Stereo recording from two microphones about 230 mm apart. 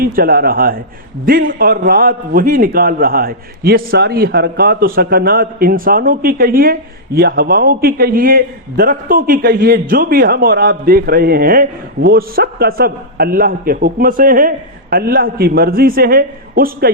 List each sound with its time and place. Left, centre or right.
0.0 s a man's voice: right